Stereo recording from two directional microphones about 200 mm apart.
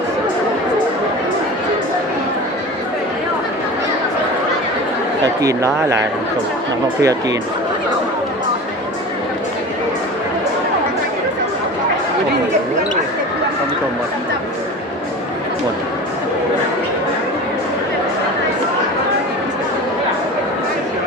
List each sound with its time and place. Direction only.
5.2 s speech: 15° right (ahead or behind)
7.0 s speech: 15° right (ahead or behind)